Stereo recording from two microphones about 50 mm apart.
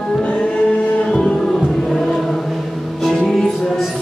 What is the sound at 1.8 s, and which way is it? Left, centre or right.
Chant, centre.